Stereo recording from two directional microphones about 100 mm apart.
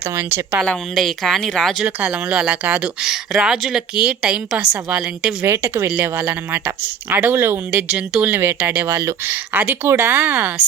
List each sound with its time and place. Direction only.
0.1 s speech: 25° right (ahead or behind)
0.6 s speech: 5° left (ahead or behind)
2.1 s speech: 15° right (ahead or behind)
5.4 s speech: 25° right (ahead or behind)
8.3 s speech: 25° right (ahead or behind)